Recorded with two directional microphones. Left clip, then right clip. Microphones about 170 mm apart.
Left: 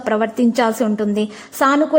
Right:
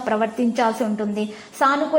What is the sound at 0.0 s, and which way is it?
A woman's voice, 35° left (ahead or behind).